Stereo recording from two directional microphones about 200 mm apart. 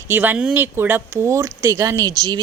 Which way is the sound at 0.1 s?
10° right (ahead or behind).